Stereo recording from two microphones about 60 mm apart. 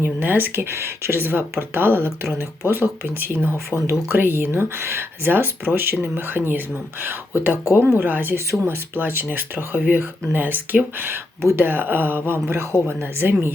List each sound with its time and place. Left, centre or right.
0.0 s speech: right
8.4 s speech: right